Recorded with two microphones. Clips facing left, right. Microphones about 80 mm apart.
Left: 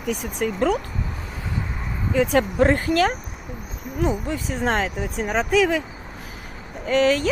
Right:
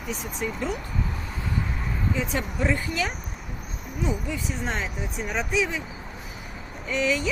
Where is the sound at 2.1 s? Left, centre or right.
Left.